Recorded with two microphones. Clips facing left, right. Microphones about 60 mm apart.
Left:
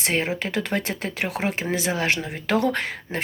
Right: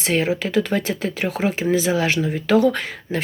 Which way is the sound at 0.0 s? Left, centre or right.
Left.